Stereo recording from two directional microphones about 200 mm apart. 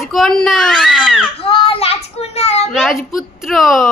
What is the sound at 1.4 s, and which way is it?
A child's voice, 25° left (ahead or behind).